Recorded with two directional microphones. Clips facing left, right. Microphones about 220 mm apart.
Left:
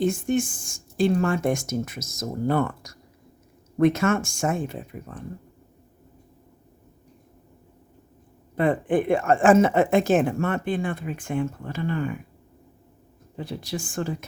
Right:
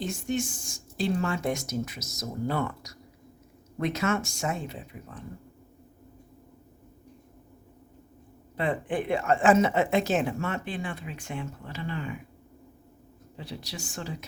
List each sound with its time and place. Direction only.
0.0 s speech: 50° left (ahead or behind)
8.5 s speech: 50° left (ahead or behind)
13.3 s speech: 50° left (ahead or behind)